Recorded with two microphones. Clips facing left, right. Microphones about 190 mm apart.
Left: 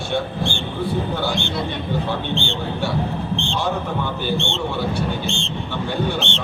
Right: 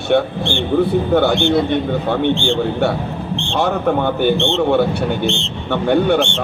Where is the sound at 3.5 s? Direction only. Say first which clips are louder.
Right 10 dB; 60° right (ahead or behind).